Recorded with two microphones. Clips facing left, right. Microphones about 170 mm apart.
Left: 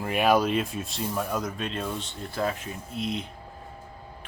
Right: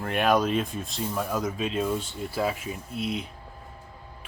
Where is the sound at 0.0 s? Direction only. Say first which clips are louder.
Left 1 dB; 5° left (ahead or behind).